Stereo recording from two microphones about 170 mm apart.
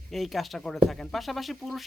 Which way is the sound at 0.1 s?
Centre (ahead or behind).